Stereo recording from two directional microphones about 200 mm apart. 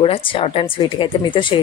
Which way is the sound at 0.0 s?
30° left (ahead or behind).